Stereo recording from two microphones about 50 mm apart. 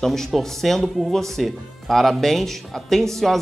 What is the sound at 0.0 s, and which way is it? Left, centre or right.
A man's voice, centre.